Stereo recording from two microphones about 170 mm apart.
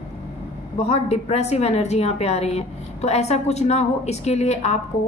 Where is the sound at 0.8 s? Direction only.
40° left (ahead or behind).